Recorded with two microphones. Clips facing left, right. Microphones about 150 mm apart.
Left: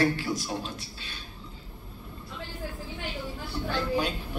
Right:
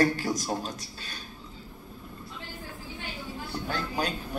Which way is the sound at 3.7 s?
40° right (ahead or behind).